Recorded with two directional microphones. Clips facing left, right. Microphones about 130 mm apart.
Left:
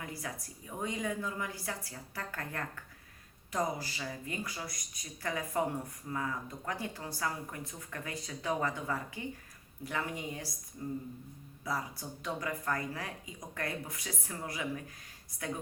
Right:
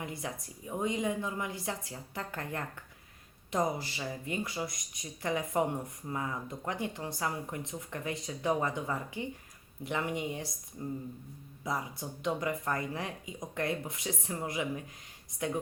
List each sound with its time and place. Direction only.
0.0 s speech: 25° right (ahead or behind)